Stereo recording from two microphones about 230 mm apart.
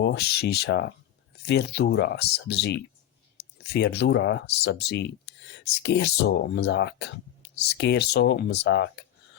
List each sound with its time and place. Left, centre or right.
0.0 s speech: left